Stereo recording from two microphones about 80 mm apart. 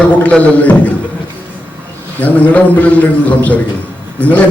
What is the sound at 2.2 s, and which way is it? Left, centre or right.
A man's voice, centre.